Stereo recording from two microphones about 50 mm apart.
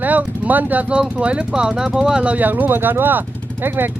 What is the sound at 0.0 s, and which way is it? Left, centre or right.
Speech, right.